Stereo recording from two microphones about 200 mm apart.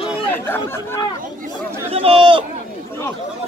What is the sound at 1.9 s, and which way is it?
Speech, 30° right (ahead or behind).